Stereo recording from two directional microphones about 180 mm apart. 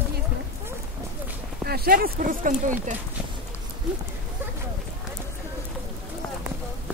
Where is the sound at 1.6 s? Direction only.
60° right (ahead or behind).